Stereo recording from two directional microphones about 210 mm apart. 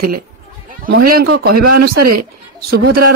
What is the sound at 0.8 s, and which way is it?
Speech, 45° right (ahead or behind).